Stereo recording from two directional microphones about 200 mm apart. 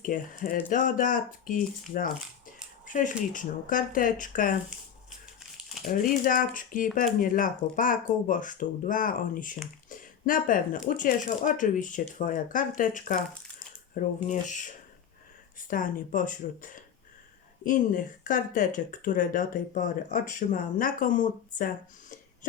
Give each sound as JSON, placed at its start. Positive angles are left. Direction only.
{"t": 0.0, "sound": "speech", "side_deg": 45}
{"t": 5.9, "sound": "speech", "side_deg": 40}